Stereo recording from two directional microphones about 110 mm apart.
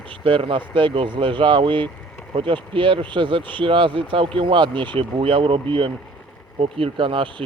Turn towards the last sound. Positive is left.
turn(degrees=-50)  # may be behind; listen again after turning